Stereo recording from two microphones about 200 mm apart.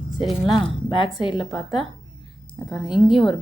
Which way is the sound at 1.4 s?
Centre (ahead or behind).